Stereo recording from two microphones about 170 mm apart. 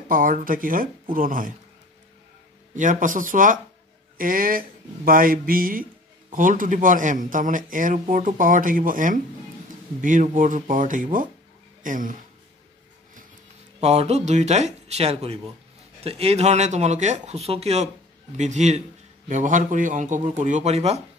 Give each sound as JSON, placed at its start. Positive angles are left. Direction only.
{"t": 0.1, "sound": "speech", "side_deg": -55}
{"t": 2.7, "sound": "speech", "side_deg": -50}
{"t": 13.7, "sound": "speech", "side_deg": -40}